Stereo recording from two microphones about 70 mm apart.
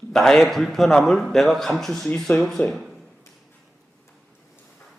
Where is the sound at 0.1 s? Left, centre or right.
Centre.